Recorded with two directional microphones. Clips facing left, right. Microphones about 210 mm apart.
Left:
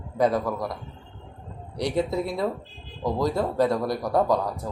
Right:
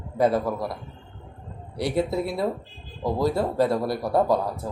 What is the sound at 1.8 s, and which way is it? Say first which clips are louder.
Speech: right 1 dB; 5° right (ahead or behind).